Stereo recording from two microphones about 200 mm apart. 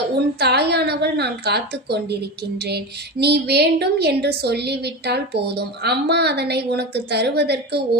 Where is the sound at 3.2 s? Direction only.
55° right (ahead or behind).